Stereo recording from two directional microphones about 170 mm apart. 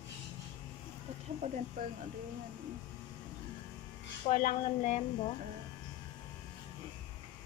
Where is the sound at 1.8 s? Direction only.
50° right (ahead or behind).